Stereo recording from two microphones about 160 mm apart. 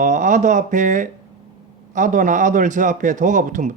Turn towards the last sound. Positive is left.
turn(degrees=-50)  # may be behind; listen again after turning